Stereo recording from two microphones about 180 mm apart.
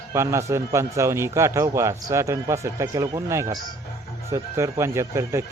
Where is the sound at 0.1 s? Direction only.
15° right (ahead or behind).